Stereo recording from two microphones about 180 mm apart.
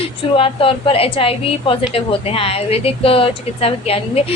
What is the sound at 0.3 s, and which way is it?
A woman's voice, 30° left (ahead or behind).